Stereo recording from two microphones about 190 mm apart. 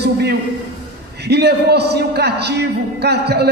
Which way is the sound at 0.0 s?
60° right (ahead or behind).